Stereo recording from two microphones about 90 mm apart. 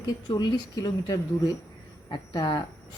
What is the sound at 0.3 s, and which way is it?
Speech, 55° left (ahead or behind).